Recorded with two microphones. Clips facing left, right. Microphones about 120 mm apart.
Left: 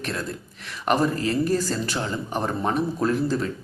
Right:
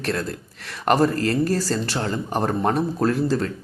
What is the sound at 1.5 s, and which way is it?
Speech, 35° right (ahead or behind).